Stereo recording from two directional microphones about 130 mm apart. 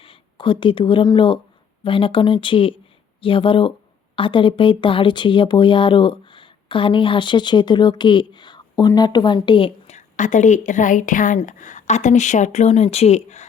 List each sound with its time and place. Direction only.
0.0 s speech: 40° left (ahead or behind)
9.8 s a woman's voice: 65° left (ahead or behind)